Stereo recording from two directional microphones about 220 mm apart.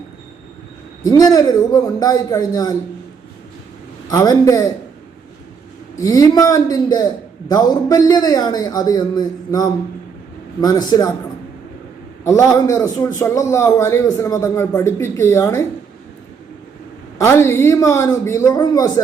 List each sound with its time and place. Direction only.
1.0 s a man's voice: 15° left (ahead or behind)
4.1 s a man's voice: 15° left (ahead or behind)
6.0 s a man's voice: 15° left (ahead or behind)
12.2 s a man's voice: 15° left (ahead or behind)
17.2 s a man's voice: 10° left (ahead or behind)